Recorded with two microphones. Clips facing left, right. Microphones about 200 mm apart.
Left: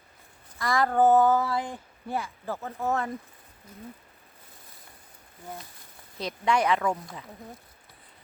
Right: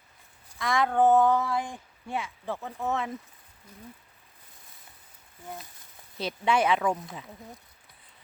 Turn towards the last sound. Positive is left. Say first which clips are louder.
# even
turn(degrees=-5)  # may be behind; listen again after turning